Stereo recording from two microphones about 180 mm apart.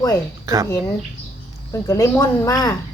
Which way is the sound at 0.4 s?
20° right (ahead or behind).